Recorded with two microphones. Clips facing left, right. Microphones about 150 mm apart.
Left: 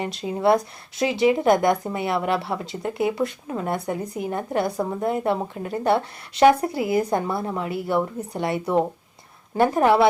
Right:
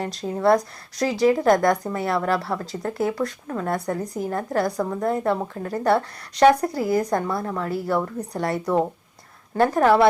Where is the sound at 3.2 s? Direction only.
20° left (ahead or behind).